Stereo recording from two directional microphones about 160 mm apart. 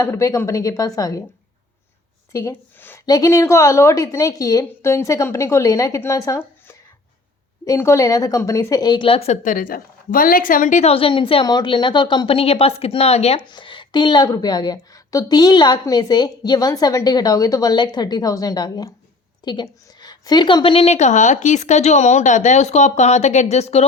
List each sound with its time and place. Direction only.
0.0 s a woman's voice: 20° left (ahead or behind)
2.3 s a woman's voice: 15° left (ahead or behind); by 23.8 s 40° left (ahead or behind)